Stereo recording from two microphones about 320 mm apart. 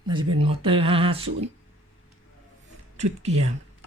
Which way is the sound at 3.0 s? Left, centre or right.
Right.